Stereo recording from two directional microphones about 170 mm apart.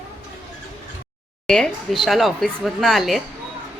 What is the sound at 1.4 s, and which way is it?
Speech, 5° left (ahead or behind).